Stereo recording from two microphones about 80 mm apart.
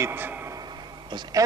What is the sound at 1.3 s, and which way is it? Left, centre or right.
Speech, right.